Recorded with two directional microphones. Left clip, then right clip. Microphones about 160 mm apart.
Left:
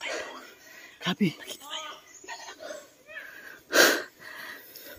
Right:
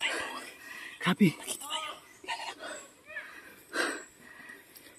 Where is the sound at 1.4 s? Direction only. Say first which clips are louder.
Right 1 dB; 40° right (ahead or behind).